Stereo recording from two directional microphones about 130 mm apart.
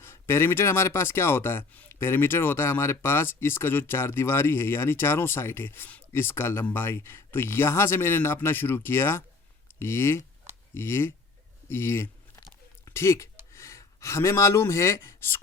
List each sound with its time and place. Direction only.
0.0 s speech: 20° left (ahead or behind)
11.7 s a sound: 20° left (ahead or behind)
12.8 s speech: 20° left (ahead or behind)